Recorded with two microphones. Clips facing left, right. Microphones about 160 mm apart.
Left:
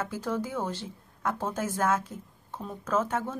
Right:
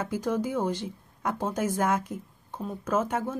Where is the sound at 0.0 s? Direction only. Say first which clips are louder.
Right 3 dB; 15° right (ahead or behind).